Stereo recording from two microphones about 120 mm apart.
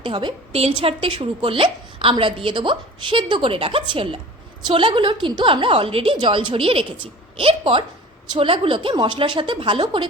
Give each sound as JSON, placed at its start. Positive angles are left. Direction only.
{"t": 0.0, "sound": "a woman's voice", "side_deg": -40}